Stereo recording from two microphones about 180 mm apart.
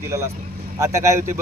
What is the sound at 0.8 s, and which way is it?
Speech, 15° right (ahead or behind).